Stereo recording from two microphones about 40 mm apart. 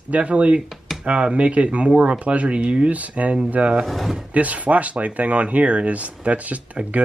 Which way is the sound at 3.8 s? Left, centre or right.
Centre.